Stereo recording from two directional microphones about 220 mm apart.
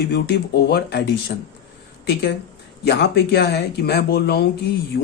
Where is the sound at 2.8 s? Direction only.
50° left (ahead or behind).